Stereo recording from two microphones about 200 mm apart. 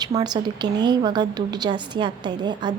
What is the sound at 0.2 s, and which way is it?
A woman's voice, 20° right (ahead or behind).